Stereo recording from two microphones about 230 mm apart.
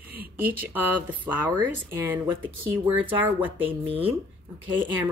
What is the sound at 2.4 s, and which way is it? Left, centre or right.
Speech, right.